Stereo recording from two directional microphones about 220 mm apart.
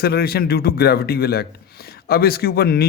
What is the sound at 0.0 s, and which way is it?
A man's voice, 45° left (ahead or behind).